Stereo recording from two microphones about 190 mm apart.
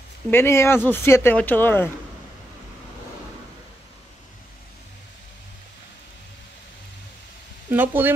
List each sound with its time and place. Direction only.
0.3 s speech: 15° left (ahead or behind)
7.7 s speech: 10° right (ahead or behind)